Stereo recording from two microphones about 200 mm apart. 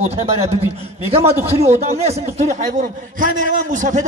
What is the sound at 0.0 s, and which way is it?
A man's voice, 30° right (ahead or behind).